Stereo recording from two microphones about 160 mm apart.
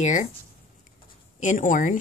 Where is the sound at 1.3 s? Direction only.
55° left (ahead or behind).